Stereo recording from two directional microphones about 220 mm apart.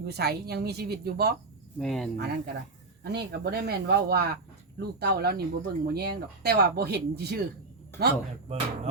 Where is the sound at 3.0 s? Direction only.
50° right (ahead or behind).